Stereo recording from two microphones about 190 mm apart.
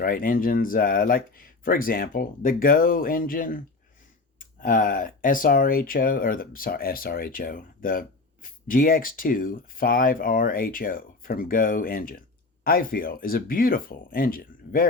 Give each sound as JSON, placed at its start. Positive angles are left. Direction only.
{"t": 0.0, "sound": "speech", "side_deg": 50}